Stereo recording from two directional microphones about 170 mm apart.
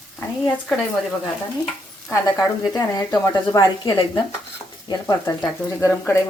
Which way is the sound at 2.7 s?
20° left (ahead or behind).